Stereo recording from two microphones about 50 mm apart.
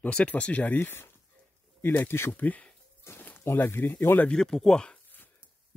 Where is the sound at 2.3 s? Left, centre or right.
Left.